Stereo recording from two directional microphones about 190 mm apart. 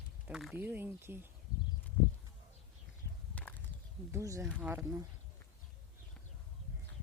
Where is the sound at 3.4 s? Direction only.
10° left (ahead or behind).